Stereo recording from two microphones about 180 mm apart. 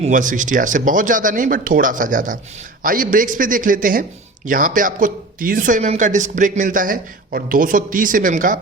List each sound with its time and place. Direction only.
0.0 s speech: 45° right (ahead or behind)